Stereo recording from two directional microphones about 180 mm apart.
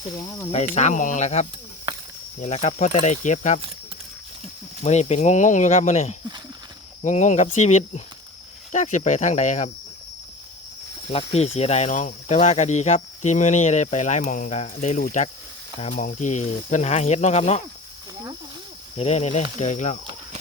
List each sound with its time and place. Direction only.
0.5 s speech: 40° left (ahead or behind)
4.8 s speech: 40° left (ahead or behind)
11.1 s speech: 35° left (ahead or behind)
18.9 s speech: 35° left (ahead or behind)